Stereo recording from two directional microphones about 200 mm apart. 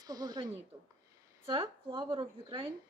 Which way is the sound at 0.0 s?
20° right (ahead or behind).